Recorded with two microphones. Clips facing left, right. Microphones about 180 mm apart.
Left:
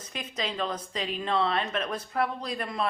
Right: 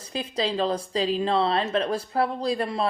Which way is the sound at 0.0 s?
30° right (ahead or behind).